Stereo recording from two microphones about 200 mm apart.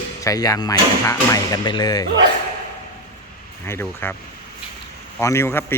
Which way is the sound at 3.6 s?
10° left (ahead or behind).